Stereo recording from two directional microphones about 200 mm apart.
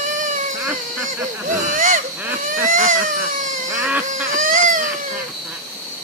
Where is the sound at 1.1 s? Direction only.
40° right (ahead or behind).